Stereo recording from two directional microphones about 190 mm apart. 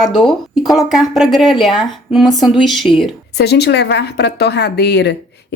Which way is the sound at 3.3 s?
60° left (ahead or behind).